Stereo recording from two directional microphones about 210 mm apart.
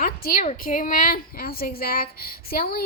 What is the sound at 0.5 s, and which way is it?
A woman's voice, 40° left (ahead or behind).